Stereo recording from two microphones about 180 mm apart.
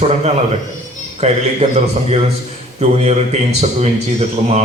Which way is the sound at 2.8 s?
35° right (ahead or behind).